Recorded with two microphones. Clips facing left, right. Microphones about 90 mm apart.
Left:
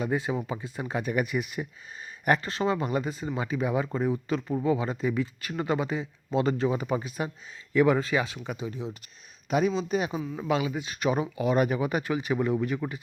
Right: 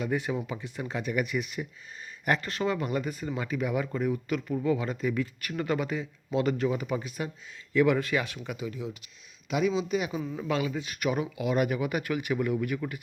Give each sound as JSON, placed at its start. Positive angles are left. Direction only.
{"t": 0.0, "sound": "speech", "side_deg": 25}
{"t": 0.9, "sound": "speech", "side_deg": 40}
{"t": 1.2, "sound": "speech", "side_deg": 25}
{"t": 10.3, "sound": "speech", "side_deg": 25}